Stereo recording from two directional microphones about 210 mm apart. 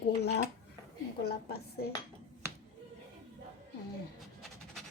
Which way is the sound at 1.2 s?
50° left (ahead or behind).